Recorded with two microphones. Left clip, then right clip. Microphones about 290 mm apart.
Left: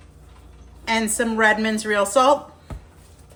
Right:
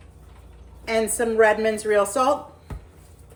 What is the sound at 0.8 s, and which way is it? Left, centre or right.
A woman's voice, centre.